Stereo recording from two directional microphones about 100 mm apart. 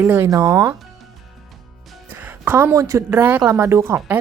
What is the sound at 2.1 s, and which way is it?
Music, 20° right (ahead or behind).